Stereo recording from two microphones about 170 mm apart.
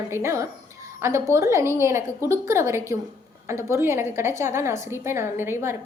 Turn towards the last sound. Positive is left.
turn(degrees=-15)  # may be behind; listen again after turning